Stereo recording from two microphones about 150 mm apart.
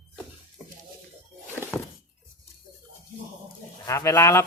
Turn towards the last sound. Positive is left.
turn(degrees=20)  # may be behind; listen again after turning